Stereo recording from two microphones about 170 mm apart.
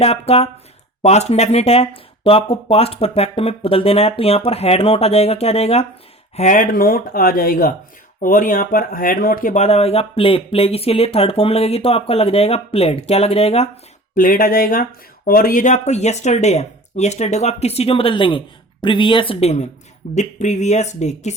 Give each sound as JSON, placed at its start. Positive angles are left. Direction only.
{"t": 0.0, "sound": "speech", "side_deg": 35}
{"t": 6.3, "sound": "speech", "side_deg": 45}
{"t": 14.2, "sound": "speech", "side_deg": 55}